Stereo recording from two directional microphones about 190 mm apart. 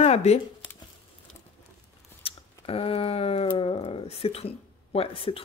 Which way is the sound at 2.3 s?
30° left (ahead or behind).